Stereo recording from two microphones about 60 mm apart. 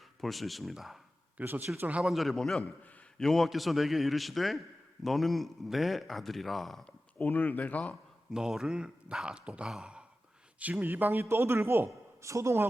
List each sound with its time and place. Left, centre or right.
0.2 s a man's voice: centre
1.4 s a man's voice: right
2.0 s a man's voice: centre
2.3 s a man's voice: centre
6.8 s speech: left
8.3 s speech: centre
9.6 s sigh: centre
10.6 s a man's voice: right
12.2 s speech: right